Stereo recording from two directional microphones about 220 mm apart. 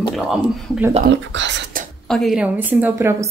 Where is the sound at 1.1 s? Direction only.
55° right (ahead or behind).